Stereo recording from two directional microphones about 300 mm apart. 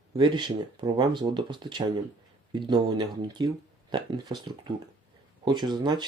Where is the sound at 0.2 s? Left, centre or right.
Centre.